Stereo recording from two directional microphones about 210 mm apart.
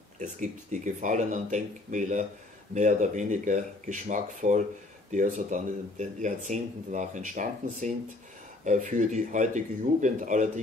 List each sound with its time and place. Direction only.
0.2 s speech: 35° right (ahead or behind)